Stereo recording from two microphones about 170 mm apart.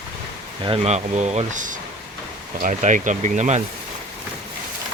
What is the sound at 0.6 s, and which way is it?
Speech, 35° right (ahead or behind).